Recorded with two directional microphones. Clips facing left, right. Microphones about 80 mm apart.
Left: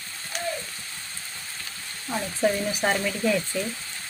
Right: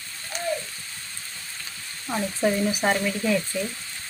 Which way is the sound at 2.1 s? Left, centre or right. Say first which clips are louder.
Right 1 dB; centre.